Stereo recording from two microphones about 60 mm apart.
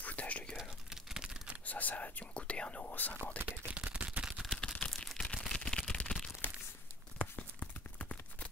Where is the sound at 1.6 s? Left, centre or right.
Left.